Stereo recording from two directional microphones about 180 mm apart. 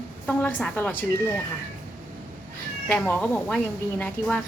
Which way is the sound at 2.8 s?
5° left (ahead or behind).